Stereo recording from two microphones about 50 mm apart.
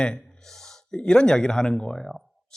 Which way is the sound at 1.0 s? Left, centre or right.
Centre.